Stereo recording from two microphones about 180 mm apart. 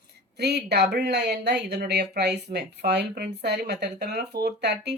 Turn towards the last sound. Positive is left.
turn(degrees=-65)  # may be behind; listen again after turning